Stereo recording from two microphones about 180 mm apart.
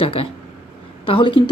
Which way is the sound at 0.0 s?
30° left (ahead or behind).